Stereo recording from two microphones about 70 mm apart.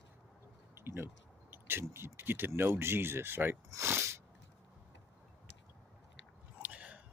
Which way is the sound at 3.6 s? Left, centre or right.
Right.